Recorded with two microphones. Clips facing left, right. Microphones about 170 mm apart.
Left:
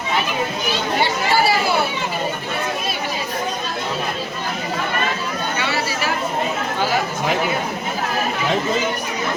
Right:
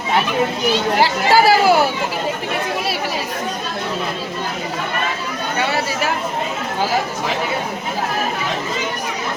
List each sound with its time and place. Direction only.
1.0 s chatter: 90° right